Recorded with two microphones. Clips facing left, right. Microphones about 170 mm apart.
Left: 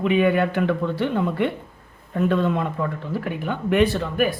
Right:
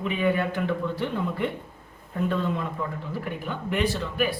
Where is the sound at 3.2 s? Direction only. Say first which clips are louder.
Left 5 dB; 65° left (ahead or behind); by 4.4 s 50° left (ahead or behind).